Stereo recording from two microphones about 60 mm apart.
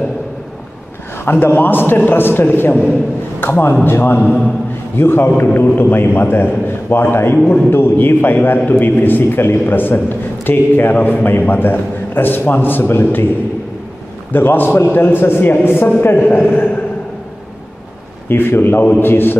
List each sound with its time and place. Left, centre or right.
1.2 s a man's voice: left
14.3 s a man's voice: left
18.3 s a man's voice: left